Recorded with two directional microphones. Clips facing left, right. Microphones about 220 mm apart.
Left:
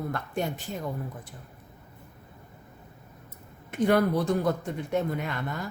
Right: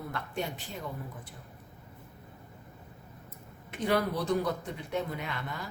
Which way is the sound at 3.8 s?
50° left (ahead or behind).